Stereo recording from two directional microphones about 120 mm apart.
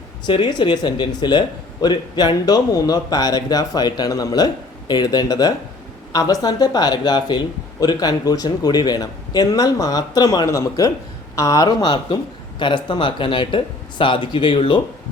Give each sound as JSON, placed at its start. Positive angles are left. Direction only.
{"t": 0.3, "sound": "speech", "side_deg": 40}